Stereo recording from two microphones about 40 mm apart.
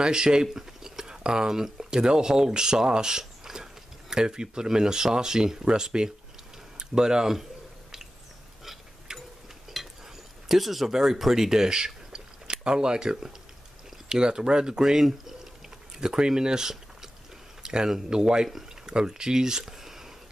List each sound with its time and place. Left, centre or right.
0.0 s speech: centre
8.6 s tick-tock: centre
9.8 s stir: centre
10.5 s speech: centre